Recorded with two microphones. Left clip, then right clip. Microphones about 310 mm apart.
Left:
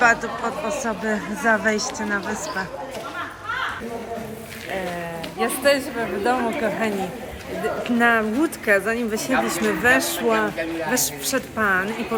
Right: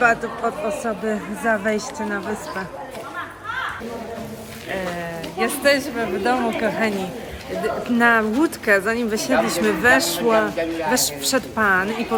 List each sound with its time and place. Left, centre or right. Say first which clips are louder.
0.0 s speech: even; centre
3.2 s a sound: even; centre
5.4 s speech: right 1 dB; centre